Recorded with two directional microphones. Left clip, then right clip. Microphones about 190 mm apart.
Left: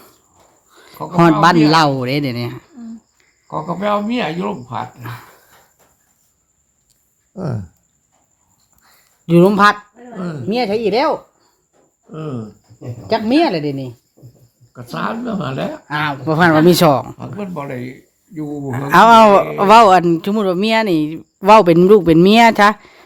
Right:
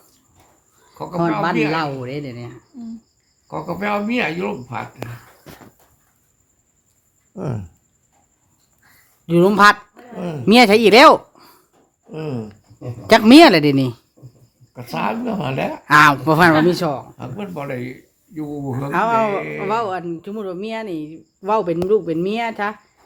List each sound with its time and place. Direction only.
1.0 s speech: 15° right (ahead or behind)
1.7 s speech: 45° left (ahead or behind)
3.5 s speech: 15° right (ahead or behind)
7.3 s speech: 5° right (ahead or behind)
9.2 s speech: 20° left (ahead or behind)
9.5 s speech: centre (ahead or behind)
10.5 s speech: 35° right (ahead or behind)
12.1 s speech: 20° right (ahead or behind)
13.1 s speech: 30° right (ahead or behind)
16.3 s speech: 5° right (ahead or behind)
16.6 s speech: 45° left (ahead or behind)
17.2 s speech: 10° right (ahead or behind)
18.9 s speech: 55° left (ahead or behind)